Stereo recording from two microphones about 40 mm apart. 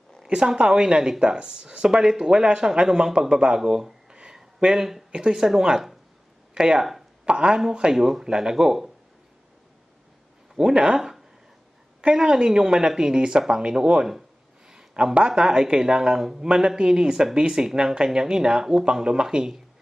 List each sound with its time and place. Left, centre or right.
0.3 s speech: right
7.2 s speech: right
7.9 s speech: centre
10.5 s speech: centre
12.0 s speech: centre
15.1 s speech: right